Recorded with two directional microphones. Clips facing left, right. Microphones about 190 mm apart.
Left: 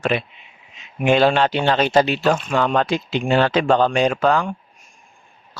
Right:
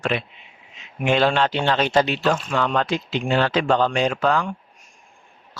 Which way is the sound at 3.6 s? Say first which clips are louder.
Left 3 dB; 50° left (ahead or behind).